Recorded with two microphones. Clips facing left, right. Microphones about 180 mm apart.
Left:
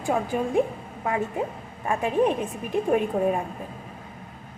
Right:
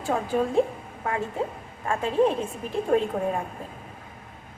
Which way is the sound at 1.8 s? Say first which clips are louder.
Even; 15° left (ahead or behind).